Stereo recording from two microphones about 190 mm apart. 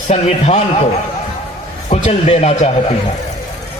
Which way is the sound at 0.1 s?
35° left (ahead or behind).